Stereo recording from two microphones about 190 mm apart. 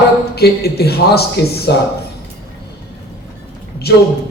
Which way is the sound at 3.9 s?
55° left (ahead or behind).